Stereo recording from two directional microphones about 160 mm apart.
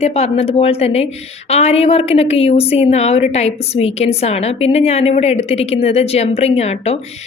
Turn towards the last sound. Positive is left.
turn(degrees=40)  # may be behind; listen again after turning